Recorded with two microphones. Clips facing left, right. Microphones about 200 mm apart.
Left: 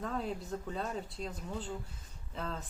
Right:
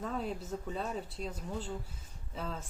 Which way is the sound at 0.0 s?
5° right (ahead or behind).